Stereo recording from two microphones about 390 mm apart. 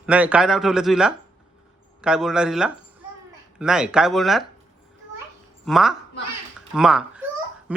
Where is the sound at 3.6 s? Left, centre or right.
Centre.